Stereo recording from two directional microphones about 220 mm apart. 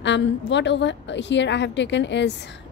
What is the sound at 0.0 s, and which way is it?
Speech, 55° left (ahead or behind).